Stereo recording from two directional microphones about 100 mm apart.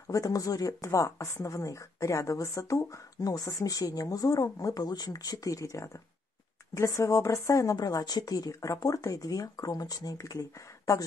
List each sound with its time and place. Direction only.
0.1 s speech: 35° left (ahead or behind)